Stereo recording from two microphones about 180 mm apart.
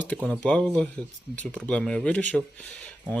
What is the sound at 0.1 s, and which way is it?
Speech, 5° left (ahead or behind).